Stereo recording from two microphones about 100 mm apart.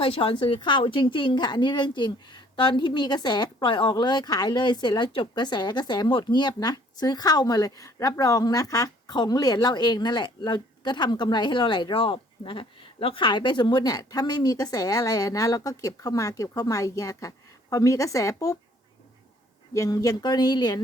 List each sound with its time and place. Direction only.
0.0 s a woman's voice: 65° left (ahead or behind); by 18.5 s 35° left (ahead or behind)
19.7 s a woman's voice: 35° left (ahead or behind)